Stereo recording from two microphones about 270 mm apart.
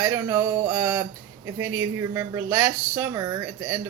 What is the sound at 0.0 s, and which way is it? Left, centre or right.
Speech, centre.